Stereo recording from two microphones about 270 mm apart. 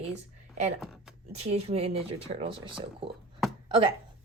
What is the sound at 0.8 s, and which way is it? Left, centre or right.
Speech, centre.